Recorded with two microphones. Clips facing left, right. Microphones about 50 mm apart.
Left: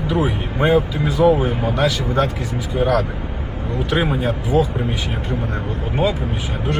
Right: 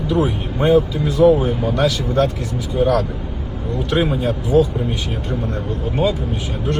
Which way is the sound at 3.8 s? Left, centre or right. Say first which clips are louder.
Right 1 dB; left.